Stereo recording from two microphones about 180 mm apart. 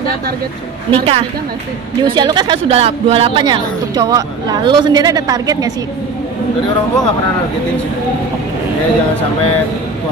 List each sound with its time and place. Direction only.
0.9 s a woman's voice: 30° right (ahead or behind)